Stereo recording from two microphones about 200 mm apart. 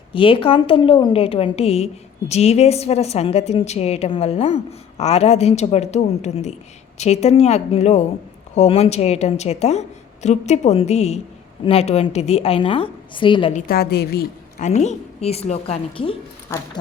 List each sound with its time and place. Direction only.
0.1 s a woman's voice: 25° left (ahead or behind)
13.5 s a woman's voice: 50° left (ahead or behind)
14.6 s a woman's voice: 35° left (ahead or behind)
16.5 s speech: 10° left (ahead or behind)